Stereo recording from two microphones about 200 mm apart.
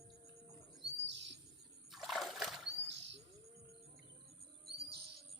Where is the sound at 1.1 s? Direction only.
60° right (ahead or behind).